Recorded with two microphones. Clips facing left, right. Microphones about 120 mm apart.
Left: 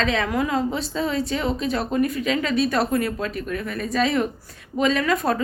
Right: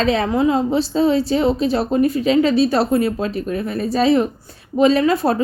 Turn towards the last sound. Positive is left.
turn(degrees=-30)  # may be behind; listen again after turning